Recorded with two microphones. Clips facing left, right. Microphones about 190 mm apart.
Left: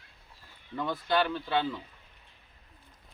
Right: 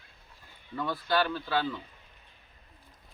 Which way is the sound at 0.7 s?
20° left (ahead or behind).